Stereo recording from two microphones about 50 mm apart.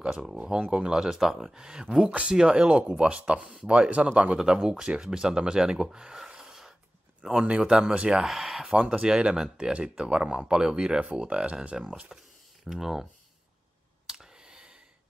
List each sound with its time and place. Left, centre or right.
0.0 s speech: centre
7.4 s speech: right
8.2 s speech: centre
8.6 s speech: right; by 13.1 s centre
14.0 s clicking: centre